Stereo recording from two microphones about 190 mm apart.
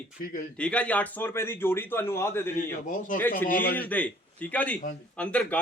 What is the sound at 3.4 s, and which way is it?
Speech, 50° left (ahead or behind).